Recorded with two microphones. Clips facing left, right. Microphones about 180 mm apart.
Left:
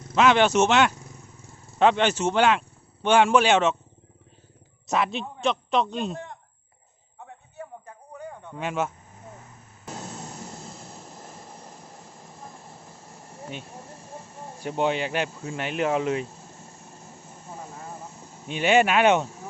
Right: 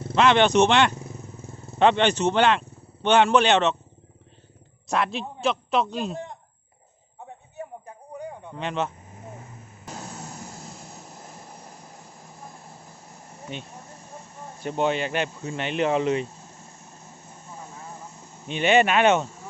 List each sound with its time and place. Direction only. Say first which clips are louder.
0.2 s speech: right 1 dB; 5° left (ahead or behind)
4.9 s speech: even; centre (ahead or behind)
7.3 s a sound: right 3 dB; 20° right (ahead or behind)
8.5 s speech: even; 5° left (ahead or behind)
9.8 s vehicle: left 1 dB; 5° left (ahead or behind)
10.9 s train: even; centre (ahead or behind)
14.6 s speech: right 1 dB; 10° left (ahead or behind)
18.4 s speech: even; 10° left (ahead or behind)